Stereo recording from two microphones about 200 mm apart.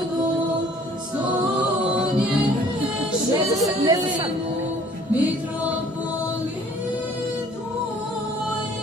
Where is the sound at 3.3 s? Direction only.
20° right (ahead or behind).